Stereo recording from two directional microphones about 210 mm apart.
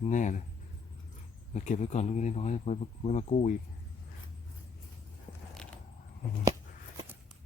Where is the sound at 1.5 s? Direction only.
35° left (ahead or behind).